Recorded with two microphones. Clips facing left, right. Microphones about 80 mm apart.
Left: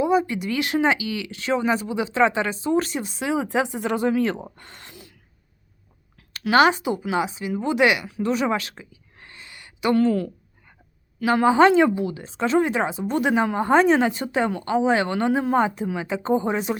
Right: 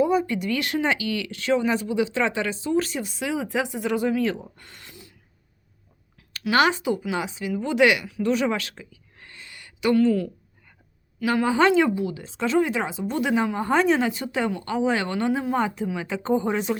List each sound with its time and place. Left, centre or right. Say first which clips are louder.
0.0 s speech: left 1 dB; centre; by 4.9 s left
4.9 s gasp: left 2 dB; left
6.5 s speech: left 3 dB; left
8.7 s a sound: even; left
9.9 s a woman's voice: even; left
11.4 s speech: left 4 dB; left